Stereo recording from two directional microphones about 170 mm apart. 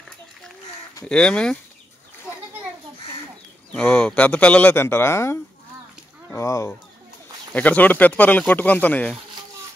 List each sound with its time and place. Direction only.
1.0 s speech: 5° left (ahead or behind)
3.7 s speech: 5° left (ahead or behind)